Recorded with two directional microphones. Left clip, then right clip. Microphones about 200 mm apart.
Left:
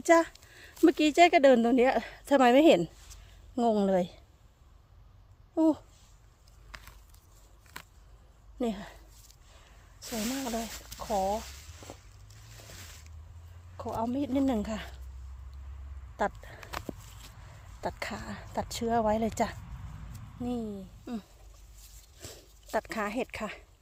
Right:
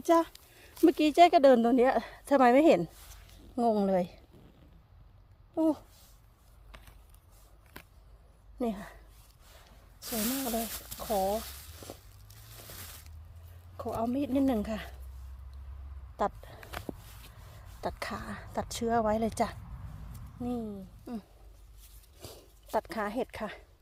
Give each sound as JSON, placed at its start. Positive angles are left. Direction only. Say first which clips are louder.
{"t": 0.0, "sound": "a woman's voice", "louder": "left 3 dB", "side_deg": 0}
{"t": 5.5, "sound": "a woman's voice", "louder": "left 2 dB", "side_deg": 0}
{"t": 6.7, "sound": "a sound", "louder": "left 6 dB", "side_deg": 10}
{"t": 8.5, "sound": "speech", "louder": "left 1 dB", "side_deg": -5}
{"t": 10.1, "sound": "speech", "louder": "even", "side_deg": -50}
{"t": 12.4, "sound": "crushing", "louder": "right 1 dB", "side_deg": -50}
{"t": 13.7, "sound": "a woman's voice", "louder": "even", "side_deg": -20}
{"t": 16.1, "sound": "speech", "louder": "even", "side_deg": -15}
{"t": 17.7, "sound": "speech", "louder": "even", "side_deg": -15}